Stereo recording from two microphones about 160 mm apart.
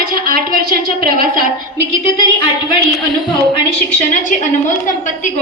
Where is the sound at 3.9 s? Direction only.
50° left (ahead or behind).